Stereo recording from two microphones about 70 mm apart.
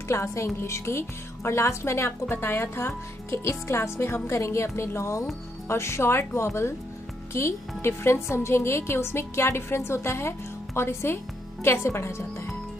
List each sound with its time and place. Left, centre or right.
0.1 s speech: left